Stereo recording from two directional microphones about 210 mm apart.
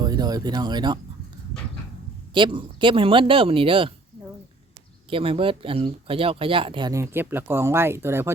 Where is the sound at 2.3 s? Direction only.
25° right (ahead or behind).